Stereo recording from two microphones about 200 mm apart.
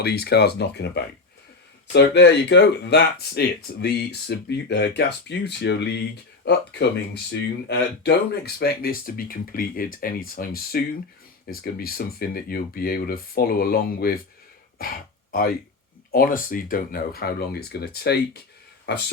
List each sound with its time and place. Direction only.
0.0 s speech: 50° left (ahead or behind)
15.3 s speech: 50° left (ahead or behind)